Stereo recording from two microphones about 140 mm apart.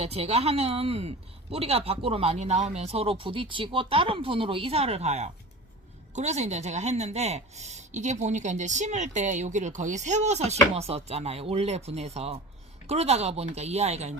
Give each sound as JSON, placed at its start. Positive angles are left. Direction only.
{"t": 0.0, "sound": "a woman's voice", "side_deg": -50}